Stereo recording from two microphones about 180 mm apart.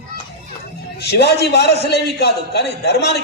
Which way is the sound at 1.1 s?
65° left (ahead or behind).